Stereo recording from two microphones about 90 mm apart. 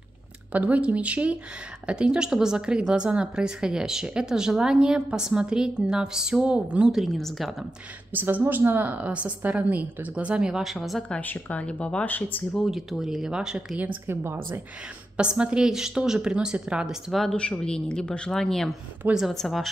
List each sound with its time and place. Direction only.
0.5 s a woman's voice: 15° right (ahead or behind); by 7.5 s centre (ahead or behind)
8.1 s a woman's voice: 20° right (ahead or behind); by 11.1 s centre (ahead or behind)
11.1 s speech: 20° left (ahead or behind)
12.6 s speech: 5° right (ahead or behind)
14.0 s speech: 25° right (ahead or behind)
15.1 s a woman's voice: 10° right (ahead or behind)
17.1 s speech: 5° left (ahead or behind)